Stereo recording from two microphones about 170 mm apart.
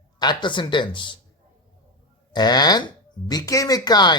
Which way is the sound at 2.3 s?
25° left (ahead or behind).